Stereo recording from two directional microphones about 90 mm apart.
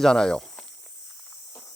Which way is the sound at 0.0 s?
5° left (ahead or behind).